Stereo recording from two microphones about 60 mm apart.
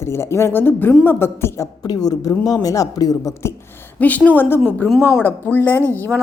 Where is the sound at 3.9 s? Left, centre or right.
Left.